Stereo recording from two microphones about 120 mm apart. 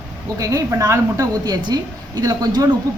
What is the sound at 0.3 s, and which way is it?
A woman's voice, 25° right (ahead or behind).